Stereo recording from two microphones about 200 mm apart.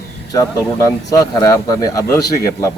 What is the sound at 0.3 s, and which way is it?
A man's voice, 15° left (ahead or behind).